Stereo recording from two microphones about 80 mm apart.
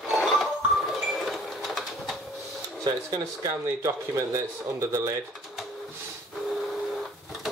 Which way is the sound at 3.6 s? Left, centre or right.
Right.